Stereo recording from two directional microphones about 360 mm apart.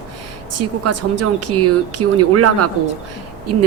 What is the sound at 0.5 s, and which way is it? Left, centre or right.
A woman's voice, right.